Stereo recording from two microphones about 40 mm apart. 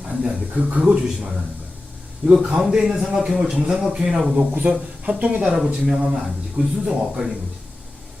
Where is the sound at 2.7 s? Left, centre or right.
Centre.